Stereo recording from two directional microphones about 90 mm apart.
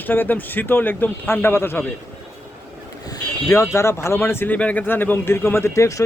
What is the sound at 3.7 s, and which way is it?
Speech, 30° left (ahead or behind).